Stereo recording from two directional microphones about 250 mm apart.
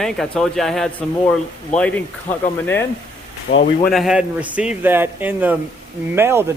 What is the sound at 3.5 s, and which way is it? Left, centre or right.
Speech, left.